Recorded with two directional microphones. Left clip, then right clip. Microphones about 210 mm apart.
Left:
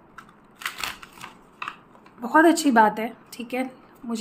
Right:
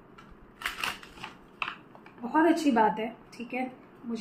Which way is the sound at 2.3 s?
50° left (ahead or behind).